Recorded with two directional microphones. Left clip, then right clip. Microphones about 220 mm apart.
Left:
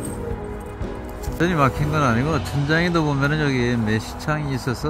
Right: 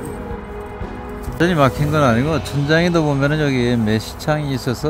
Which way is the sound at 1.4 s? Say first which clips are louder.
Right 4 dB; 20° right (ahead or behind).